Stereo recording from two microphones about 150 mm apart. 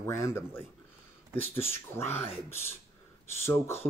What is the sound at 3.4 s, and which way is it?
Speech, 15° left (ahead or behind).